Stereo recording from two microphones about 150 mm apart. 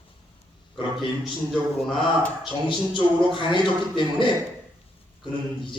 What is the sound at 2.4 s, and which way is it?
Speech, 35° left (ahead or behind).